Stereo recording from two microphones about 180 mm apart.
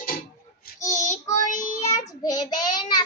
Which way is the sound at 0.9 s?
40° left (ahead or behind).